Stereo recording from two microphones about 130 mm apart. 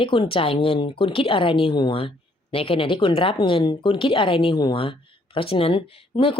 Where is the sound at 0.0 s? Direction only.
40° left (ahead or behind).